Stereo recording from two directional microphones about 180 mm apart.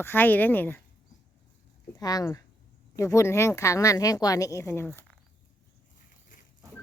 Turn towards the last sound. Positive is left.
turn(degrees=15)  # may be behind; listen again after turning